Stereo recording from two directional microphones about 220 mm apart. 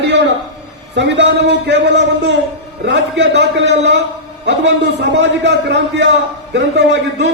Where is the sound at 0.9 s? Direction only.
55° right (ahead or behind).